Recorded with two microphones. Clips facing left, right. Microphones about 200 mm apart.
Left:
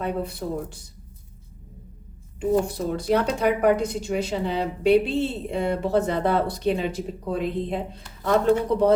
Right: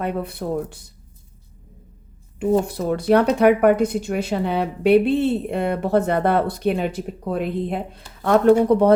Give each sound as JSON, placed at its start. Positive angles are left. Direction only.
{"t": 0.0, "sound": "speech", "side_deg": -60}
{"t": 2.4, "sound": "speech", "side_deg": -60}